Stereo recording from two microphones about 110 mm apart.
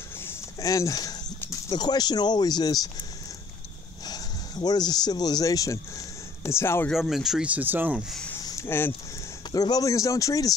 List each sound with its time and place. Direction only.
0.2 s a sound: 25° left (ahead or behind)
1.5 s speech: 40° left (ahead or behind); by 6.9 s 25° left (ahead or behind)
6.9 s speech: centre (ahead or behind)
7.4 s speech: 15° right (ahead or behind)
8.5 s a sound: 25° left (ahead or behind)
9.5 s speech: 35° left (ahead or behind)